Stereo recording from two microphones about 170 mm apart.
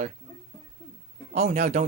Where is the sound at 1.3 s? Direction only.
40° right (ahead or behind).